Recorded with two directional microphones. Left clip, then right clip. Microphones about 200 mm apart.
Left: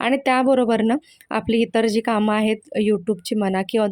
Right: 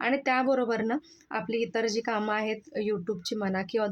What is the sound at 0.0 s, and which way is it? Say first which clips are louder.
Speech: left 8 dB; 35° left (ahead or behind).